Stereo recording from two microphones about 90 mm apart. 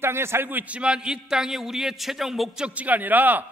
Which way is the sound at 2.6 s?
15° right (ahead or behind).